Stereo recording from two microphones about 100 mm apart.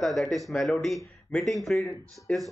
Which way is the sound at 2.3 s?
15° left (ahead or behind).